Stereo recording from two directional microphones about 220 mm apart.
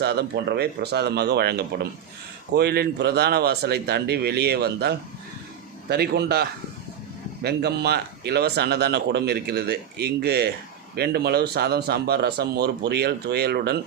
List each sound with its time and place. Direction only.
0.0 s a man's voice: 50° right (ahead or behind)